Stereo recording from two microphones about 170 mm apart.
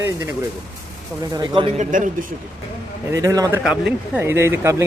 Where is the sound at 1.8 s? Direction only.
45° right (ahead or behind).